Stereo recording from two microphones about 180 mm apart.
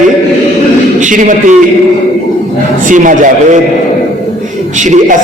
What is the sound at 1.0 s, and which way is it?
Speech, 45° right (ahead or behind).